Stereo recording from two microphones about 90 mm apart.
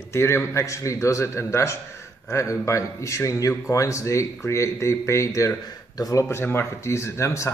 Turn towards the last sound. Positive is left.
turn(degrees=30)  # may be behind; listen again after turning